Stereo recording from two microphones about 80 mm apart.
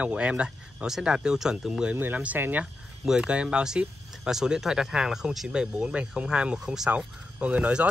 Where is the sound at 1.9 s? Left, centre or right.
Right.